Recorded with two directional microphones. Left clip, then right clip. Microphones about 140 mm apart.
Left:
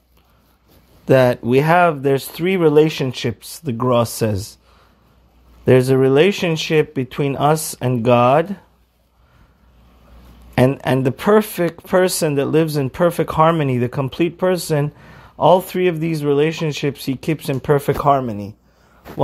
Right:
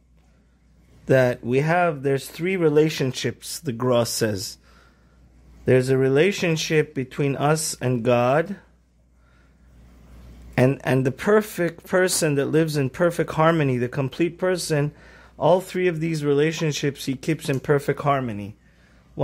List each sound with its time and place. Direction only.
1.0 s speech: 10° right (ahead or behind); by 4.6 s 25° right (ahead or behind)
5.7 s speech: 10° right (ahead or behind)
10.8 s speech: 10° right (ahead or behind)
18.2 s speech: 30° left (ahead or behind)